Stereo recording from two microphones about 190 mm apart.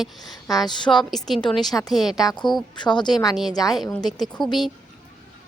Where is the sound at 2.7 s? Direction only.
25° left (ahead or behind).